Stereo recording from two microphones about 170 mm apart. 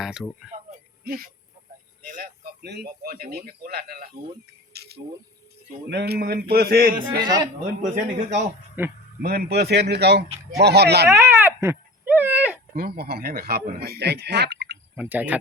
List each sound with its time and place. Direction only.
0.0 s speech: centre (ahead or behind)
1.0 s speech: 60° right (ahead or behind)
4.7 s a sound: 70° right (ahead or behind)
5.9 s speech: 75° right (ahead or behind)
7.8 s speech: 50° right (ahead or behind)
8.8 s speech: 10° right (ahead or behind)
9.2 s speech: 65° right (ahead or behind)
11.1 s wail: 15° right (ahead or behind)
12.7 s speech: 65° right (ahead or behind)
15.1 s speech: 10° right (ahead or behind)